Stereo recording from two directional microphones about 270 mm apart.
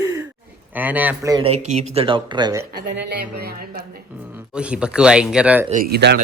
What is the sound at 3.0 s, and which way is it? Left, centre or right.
Speech, right.